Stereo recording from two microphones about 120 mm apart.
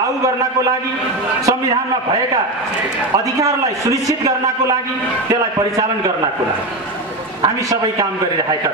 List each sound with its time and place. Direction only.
3.3 s a man's voice: 30° right (ahead or behind)
7.4 s a man's voice: 30° right (ahead or behind)